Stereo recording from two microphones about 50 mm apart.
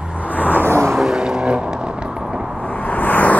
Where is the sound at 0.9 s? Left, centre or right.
Centre.